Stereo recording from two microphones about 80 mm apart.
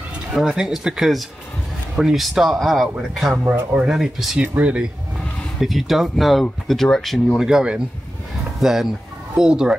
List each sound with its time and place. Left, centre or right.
0.3 s speech: centre
3.4 s speech: right
3.9 s speech: centre
4.4 s speech: centre
5.6 s speech: centre
7.3 s speech: centre